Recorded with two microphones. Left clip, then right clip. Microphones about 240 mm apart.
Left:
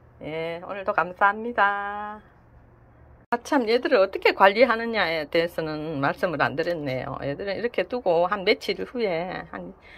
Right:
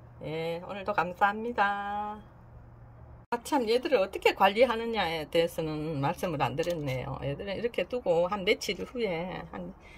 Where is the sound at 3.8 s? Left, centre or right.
Left.